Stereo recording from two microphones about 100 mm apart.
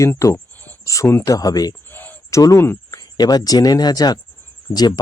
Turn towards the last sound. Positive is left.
turn(degrees=40)  # may be behind; listen again after turning